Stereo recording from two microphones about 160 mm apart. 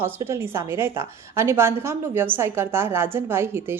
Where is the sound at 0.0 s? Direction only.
15° right (ahead or behind).